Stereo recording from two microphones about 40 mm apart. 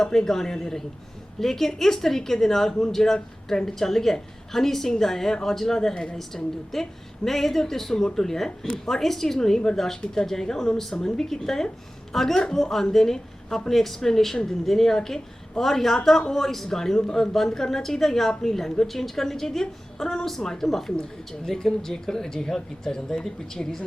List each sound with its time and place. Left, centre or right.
0.0 s speech: centre
6.1 s speech: centre
8.4 s speech: left
8.9 s speech: centre